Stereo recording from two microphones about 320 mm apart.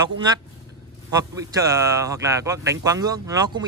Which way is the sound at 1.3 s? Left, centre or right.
Centre.